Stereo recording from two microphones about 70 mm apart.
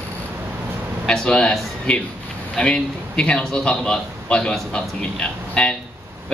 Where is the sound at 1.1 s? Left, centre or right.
Centre.